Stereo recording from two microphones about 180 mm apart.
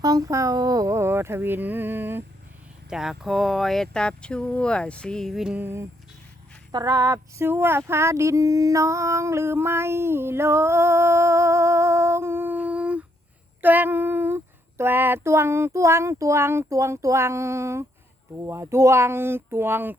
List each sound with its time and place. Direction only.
0.0 s female singing: 20° right (ahead or behind)
2.9 s speech: centre (ahead or behind)
6.7 s female singing: 20° right (ahead or behind)